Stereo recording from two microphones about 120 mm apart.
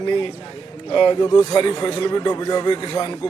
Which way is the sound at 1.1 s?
30° left (ahead or behind).